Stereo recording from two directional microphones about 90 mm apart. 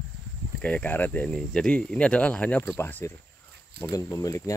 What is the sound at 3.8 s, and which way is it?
Speech, 40° left (ahead or behind).